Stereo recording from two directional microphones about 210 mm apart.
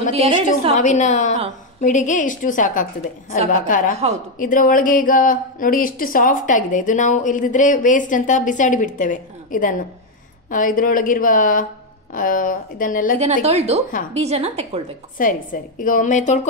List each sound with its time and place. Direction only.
0.1 s a woman's voice: 30° right (ahead or behind)
0.7 s a woman's voice: 35° left (ahead or behind)
4.0 s a woman's voice: 30° right (ahead or behind)
4.4 s a woman's voice: 40° left (ahead or behind)
13.2 s a woman's voice: 30° right (ahead or behind)
15.1 s a woman's voice: 40° left (ahead or behind)